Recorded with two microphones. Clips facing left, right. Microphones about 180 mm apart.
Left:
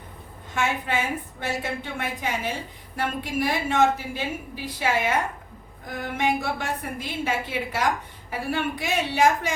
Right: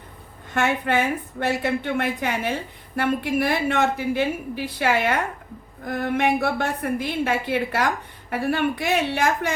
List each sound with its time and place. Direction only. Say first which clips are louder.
0.5 s a woman's voice: right 4 dB; 65° right (ahead or behind)